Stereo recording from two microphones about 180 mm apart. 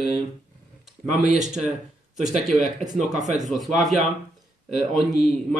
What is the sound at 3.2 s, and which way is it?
Speech, 40° right (ahead or behind).